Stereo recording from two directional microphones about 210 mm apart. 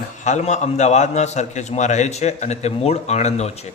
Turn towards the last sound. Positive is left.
turn(degrees=30)  # may be behind; listen again after turning